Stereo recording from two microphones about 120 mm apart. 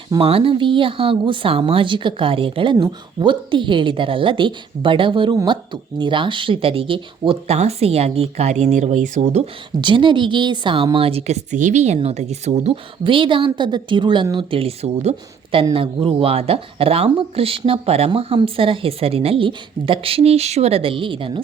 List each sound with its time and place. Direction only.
0.2 s speech: 50° right (ahead or behind); by 9.4 s 85° right
9.8 s speech: 45° right (ahead or behind)
10.9 s speech: 55° right (ahead or behind)
13.1 s a woman's voice: 45° right (ahead or behind)
14.3 s speech: 50° right (ahead or behind)